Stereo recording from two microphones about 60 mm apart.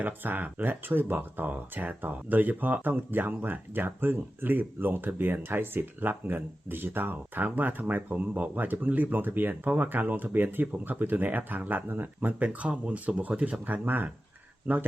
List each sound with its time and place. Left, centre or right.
0.0 s speech: right